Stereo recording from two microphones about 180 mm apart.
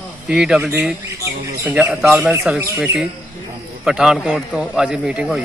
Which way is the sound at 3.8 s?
5° right (ahead or behind).